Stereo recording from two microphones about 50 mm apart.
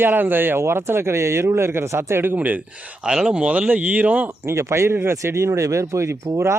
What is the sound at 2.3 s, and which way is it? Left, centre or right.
Speech, right.